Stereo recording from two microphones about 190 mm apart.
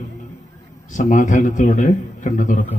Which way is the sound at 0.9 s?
40° left (ahead or behind).